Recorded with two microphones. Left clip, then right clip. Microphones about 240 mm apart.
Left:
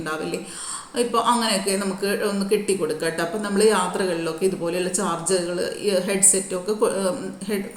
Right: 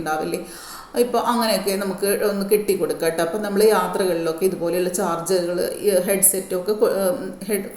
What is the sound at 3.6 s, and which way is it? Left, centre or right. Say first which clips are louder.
Speech: right 2 dB; centre.